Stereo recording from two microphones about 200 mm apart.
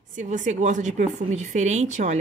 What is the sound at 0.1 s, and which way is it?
A woman's voice, 40° right (ahead or behind).